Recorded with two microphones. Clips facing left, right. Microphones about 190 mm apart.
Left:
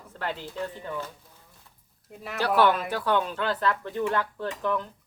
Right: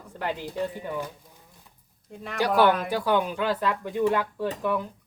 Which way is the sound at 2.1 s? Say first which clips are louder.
Right 1 dB; 5° left (ahead or behind).